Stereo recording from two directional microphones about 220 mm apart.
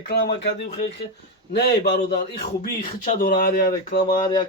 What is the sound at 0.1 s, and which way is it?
Speech, 50° left (ahead or behind).